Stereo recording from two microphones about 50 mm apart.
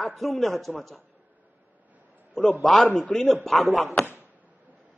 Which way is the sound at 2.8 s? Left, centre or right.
Left.